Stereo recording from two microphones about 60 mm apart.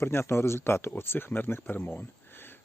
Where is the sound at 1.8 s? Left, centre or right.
Left.